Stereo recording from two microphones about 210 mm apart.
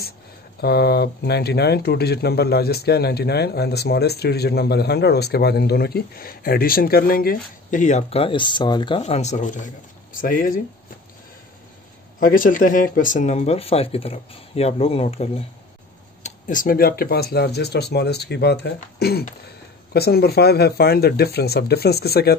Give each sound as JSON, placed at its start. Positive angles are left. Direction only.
{"t": 0.6, "sound": "speech", "side_deg": 50}
{"t": 12.2, "sound": "speech", "side_deg": 40}